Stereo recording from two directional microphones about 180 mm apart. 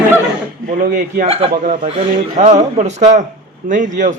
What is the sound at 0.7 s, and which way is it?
A man's voice, 50° right (ahead or behind).